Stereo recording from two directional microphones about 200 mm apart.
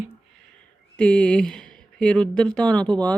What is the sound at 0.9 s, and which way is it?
Speech, 5° left (ahead or behind).